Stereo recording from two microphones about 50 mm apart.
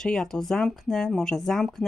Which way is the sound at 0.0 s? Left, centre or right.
Centre.